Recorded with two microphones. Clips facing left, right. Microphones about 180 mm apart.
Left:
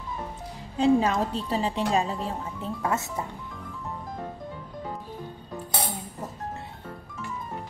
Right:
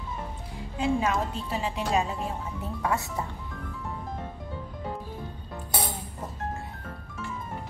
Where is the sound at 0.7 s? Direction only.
35° left (ahead or behind).